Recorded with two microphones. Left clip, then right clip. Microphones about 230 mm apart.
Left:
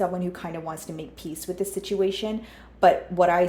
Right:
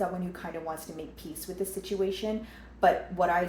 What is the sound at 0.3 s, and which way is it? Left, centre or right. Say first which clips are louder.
Speech: left 3 dB; left.